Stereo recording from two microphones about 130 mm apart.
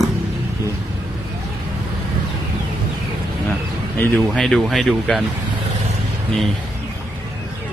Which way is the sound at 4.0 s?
10° left (ahead or behind).